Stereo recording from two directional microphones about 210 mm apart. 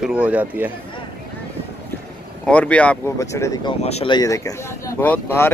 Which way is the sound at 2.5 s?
5° left (ahead or behind).